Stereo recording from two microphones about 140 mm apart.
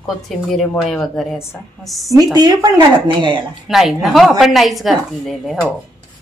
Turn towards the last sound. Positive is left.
turn(degrees=0)  # may be behind; listen again after turning